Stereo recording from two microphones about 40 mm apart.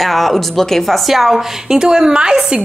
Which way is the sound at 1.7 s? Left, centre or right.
Centre.